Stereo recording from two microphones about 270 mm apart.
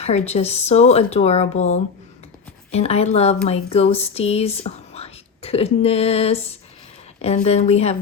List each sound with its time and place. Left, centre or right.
0.0 s speech: left